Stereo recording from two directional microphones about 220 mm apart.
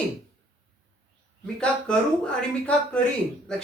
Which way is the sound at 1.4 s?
5° left (ahead or behind).